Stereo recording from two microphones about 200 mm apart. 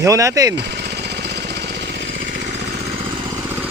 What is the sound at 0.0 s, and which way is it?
Speech, 15° right (ahead or behind).